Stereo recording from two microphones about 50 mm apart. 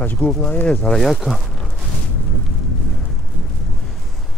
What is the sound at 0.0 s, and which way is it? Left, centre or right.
Speech, left.